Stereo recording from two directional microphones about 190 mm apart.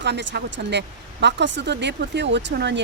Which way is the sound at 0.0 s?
65° right (ahead or behind).